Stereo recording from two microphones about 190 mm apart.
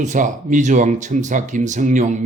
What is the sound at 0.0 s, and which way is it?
Speech, 40° right (ahead or behind).